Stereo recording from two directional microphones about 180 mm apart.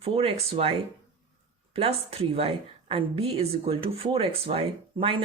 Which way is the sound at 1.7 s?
30° right (ahead or behind).